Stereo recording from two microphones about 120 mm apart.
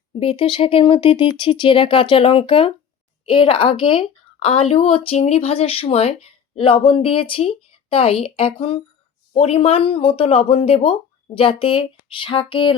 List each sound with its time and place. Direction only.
0.1 s a woman's voice: 50° left (ahead or behind)